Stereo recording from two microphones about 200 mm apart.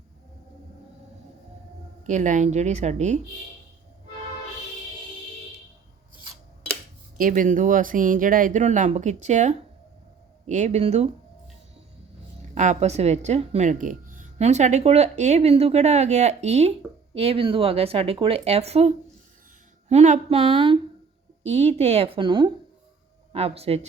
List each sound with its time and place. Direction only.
2.0 s speech: 40° right (ahead or behind)
7.2 s speech: 40° right (ahead or behind)
12.5 s speech: 35° right (ahead or behind)